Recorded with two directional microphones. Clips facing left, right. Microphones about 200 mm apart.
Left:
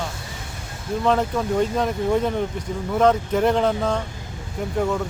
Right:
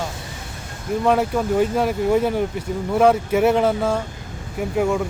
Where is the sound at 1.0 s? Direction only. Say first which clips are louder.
Right 2 dB; 10° right (ahead or behind).